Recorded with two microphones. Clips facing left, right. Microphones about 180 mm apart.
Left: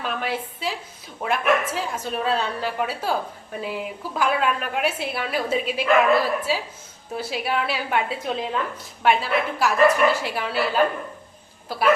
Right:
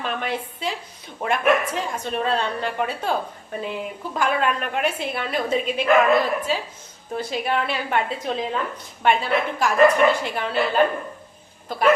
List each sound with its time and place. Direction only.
0.0 s a woman's voice: 5° left (ahead or behind)